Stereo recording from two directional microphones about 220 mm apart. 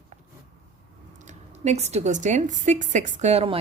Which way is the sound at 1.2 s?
30° right (ahead or behind).